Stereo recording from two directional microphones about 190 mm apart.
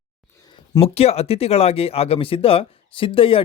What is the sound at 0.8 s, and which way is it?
Speech, 30° left (ahead or behind).